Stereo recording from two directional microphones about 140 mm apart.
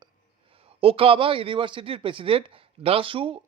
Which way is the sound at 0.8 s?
40° right (ahead or behind).